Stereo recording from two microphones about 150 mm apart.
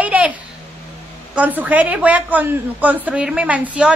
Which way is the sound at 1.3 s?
10° right (ahead or behind).